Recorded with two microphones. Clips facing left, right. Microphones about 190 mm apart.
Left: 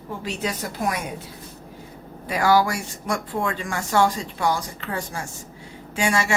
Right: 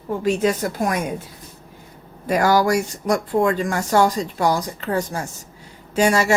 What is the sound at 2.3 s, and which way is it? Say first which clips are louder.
Speech: right 3 dB; 45° right (ahead or behind).